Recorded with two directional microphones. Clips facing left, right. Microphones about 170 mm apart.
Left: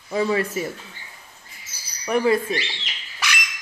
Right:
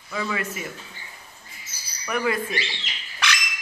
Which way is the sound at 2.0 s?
30° left (ahead or behind).